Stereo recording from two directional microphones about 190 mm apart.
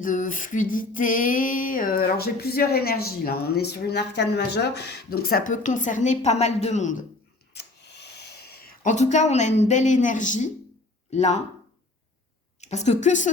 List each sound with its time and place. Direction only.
0.0 s female singing: 45° left (ahead or behind)
7.5 s a sound: 60° left (ahead or behind); by 9.5 s 40° left (ahead or behind)
9.6 s a woman's voice: 40° left (ahead or behind)
12.6 s a woman's voice: 35° left (ahead or behind)